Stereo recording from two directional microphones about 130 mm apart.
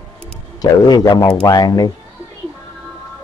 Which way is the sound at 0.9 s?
30° left (ahead or behind).